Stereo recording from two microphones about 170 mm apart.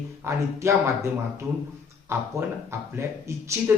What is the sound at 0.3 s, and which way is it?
Speech, 15° right (ahead or behind).